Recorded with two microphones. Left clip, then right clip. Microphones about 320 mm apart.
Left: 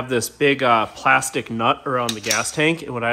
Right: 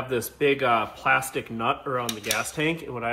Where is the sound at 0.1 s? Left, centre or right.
Left.